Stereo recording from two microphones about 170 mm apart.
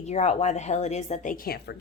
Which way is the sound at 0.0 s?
40° left (ahead or behind).